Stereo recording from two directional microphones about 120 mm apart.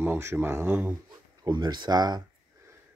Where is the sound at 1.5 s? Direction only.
35° right (ahead or behind).